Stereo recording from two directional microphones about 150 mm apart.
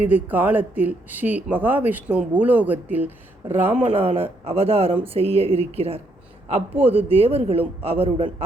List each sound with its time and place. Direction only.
0.0 s speech: 10° right (ahead or behind)
3.9 s speech: 40° right (ahead or behind)